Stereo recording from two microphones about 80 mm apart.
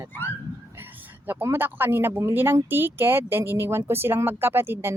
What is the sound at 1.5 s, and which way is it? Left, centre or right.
Speech, right.